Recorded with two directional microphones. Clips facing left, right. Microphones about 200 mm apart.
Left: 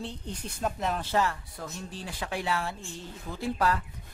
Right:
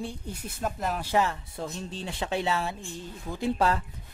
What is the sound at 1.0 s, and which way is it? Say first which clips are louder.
Speech: right 2 dB; 15° right (ahead or behind).